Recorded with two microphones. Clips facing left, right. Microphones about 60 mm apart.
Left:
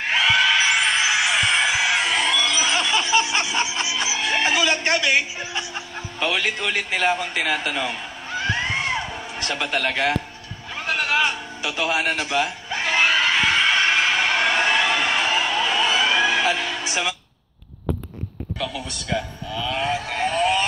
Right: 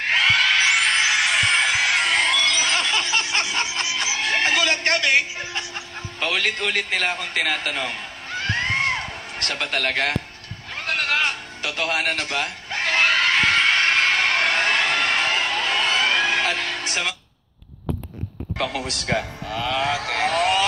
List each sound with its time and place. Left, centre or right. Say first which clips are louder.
0.1 s music: even; centre
4.3 s a sound: even; centre
4.8 s a man's voice: even; centre
8.8 s music: even; centre
13.7 s a sound: even; centre
18.6 s speech: right 4 dB; right